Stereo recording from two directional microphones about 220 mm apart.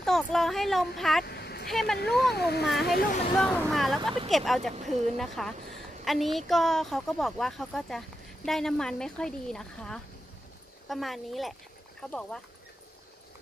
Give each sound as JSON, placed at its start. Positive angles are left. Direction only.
{"t": 0.0, "sound": "a woman's voice", "side_deg": 0}
{"t": 1.2, "sound": "vehicle", "side_deg": 45}
{"t": 1.7, "sound": "a woman's voice", "side_deg": 0}
{"t": 2.0, "sound": "speech", "side_deg": 50}
{"t": 3.3, "sound": "a woman's voice", "side_deg": 5}